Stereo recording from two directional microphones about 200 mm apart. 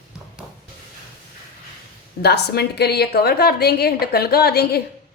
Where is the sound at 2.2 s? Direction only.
55° left (ahead or behind).